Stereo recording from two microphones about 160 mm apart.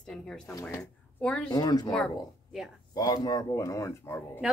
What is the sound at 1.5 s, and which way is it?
Speech, 25° left (ahead or behind).